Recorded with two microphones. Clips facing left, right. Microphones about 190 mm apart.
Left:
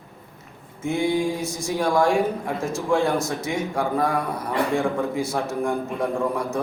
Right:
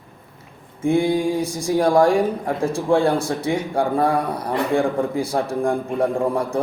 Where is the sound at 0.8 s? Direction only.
30° right (ahead or behind).